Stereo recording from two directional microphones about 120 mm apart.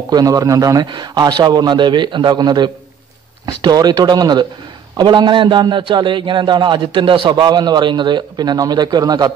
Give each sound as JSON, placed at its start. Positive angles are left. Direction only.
{"t": 0.1, "sound": "a man's voice", "side_deg": -30}